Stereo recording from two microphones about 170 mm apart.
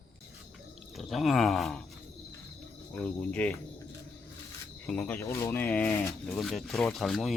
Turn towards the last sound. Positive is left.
turn(degrees=0)  # may be behind; listen again after turning